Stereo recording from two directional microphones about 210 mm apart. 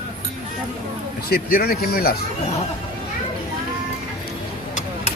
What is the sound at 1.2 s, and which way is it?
Speech, 45° left (ahead or behind).